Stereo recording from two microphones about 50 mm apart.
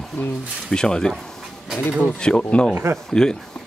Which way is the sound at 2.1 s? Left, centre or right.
Centre.